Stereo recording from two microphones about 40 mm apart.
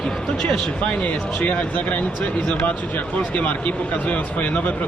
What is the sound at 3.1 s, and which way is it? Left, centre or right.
A man's voice, left.